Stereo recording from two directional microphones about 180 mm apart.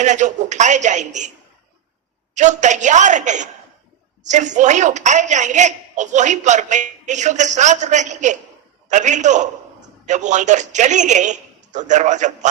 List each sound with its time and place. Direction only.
0.0 s a woman's voice: 40° right (ahead or behind)
2.3 s a woman's voice: 40° right (ahead or behind)